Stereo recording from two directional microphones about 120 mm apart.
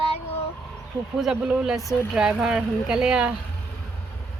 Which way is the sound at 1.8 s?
25° left (ahead or behind).